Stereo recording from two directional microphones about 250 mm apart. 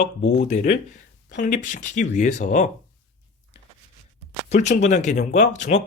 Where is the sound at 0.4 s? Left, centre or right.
Left.